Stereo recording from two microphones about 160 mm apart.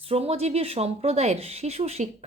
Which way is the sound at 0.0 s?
40° right (ahead or behind).